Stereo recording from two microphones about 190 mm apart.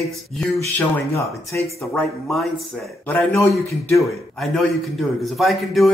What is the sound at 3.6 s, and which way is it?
Speech, 15° left (ahead or behind).